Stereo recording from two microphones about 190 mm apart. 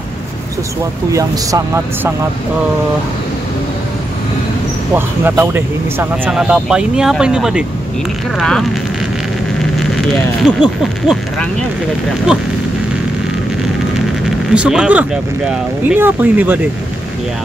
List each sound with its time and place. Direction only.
4.9 s speech: 10° right (ahead or behind)
9.8 s speech: centre (ahead or behind)
14.5 s speech: 5° right (ahead or behind)